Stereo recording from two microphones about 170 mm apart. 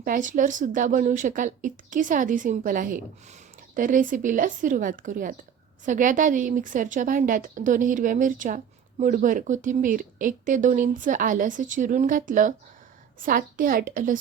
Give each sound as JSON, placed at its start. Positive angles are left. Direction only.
{"t": 0.0, "sound": "a woman's voice", "side_deg": -50}